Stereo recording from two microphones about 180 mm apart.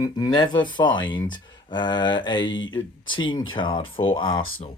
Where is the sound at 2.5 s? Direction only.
90° left.